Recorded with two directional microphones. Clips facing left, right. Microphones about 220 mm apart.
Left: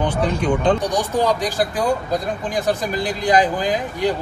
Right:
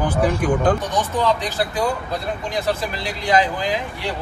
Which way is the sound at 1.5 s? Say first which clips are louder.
Left 2 dB; 45° left (ahead or behind).